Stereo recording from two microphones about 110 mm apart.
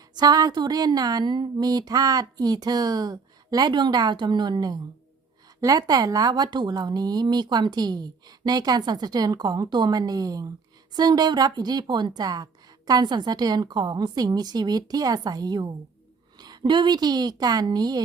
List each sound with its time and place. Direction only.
0.2 s speech: 35° right (ahead or behind)